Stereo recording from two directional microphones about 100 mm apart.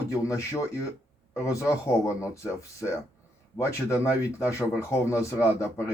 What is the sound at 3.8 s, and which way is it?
Speech, 30° left (ahead or behind).